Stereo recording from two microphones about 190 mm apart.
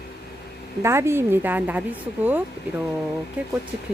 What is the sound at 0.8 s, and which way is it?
Speech, 15° right (ahead or behind).